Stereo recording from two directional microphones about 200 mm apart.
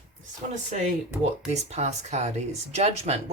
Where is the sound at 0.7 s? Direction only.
35° right (ahead or behind).